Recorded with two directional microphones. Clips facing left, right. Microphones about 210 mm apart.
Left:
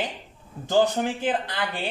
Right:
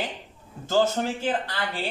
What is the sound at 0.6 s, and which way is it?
Speech, 15° left (ahead or behind).